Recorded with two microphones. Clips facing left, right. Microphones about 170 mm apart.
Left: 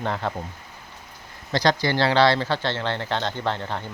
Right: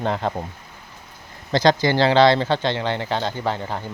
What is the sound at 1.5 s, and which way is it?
Speech, 20° right (ahead or behind).